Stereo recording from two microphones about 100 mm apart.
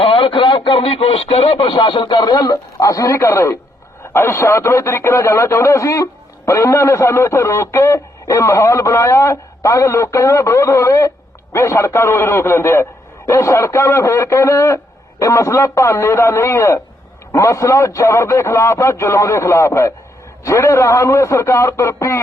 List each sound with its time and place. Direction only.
0.0 s speech: 60° left (ahead or behind); by 22.2 s 30° left (ahead or behind)